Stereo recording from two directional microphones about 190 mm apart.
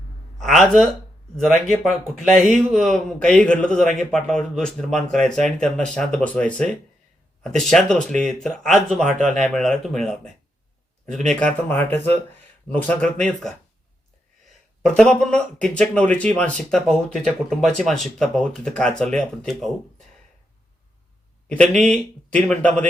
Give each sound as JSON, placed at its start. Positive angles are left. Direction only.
{"t": 0.3, "sound": "a man's voice", "side_deg": 0}
{"t": 14.8, "sound": "speech", "side_deg": 5}
{"t": 21.5, "sound": "speech", "side_deg": 5}